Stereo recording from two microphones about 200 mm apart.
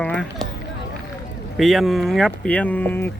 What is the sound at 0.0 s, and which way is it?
Run, 5° left (ahead or behind).